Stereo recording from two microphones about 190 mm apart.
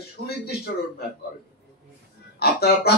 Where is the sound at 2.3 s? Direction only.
55° left (ahead or behind).